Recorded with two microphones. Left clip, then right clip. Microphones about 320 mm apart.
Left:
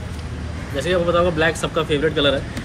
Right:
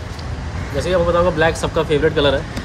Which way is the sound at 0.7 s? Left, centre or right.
Centre.